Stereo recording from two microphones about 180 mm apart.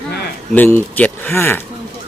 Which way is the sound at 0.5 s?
10° left (ahead or behind).